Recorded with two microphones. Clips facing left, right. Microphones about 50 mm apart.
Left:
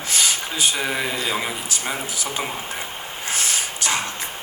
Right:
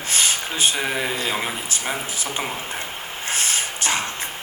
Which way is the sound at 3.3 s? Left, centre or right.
Right.